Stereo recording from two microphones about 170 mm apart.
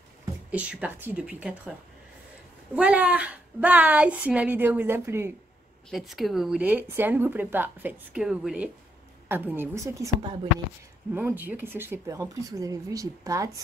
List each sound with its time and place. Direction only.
0.5 s a woman's voice: 10° right (ahead or behind)
2.7 s a woman's voice: 5° right (ahead or behind)
5.9 s a woman's voice: centre (ahead or behind); by 10.1 s 15° right (ahead or behind)
11.1 s speech: 10° right (ahead or behind)